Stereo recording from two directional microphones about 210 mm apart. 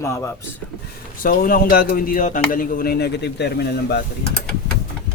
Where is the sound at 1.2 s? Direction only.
45° left (ahead or behind).